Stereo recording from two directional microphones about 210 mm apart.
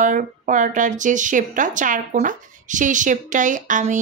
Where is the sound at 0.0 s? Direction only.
35° right (ahead or behind).